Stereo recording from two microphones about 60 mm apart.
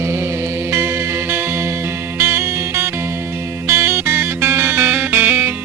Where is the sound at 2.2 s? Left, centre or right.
Right.